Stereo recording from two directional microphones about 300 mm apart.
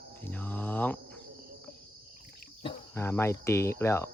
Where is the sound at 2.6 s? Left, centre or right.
Centre.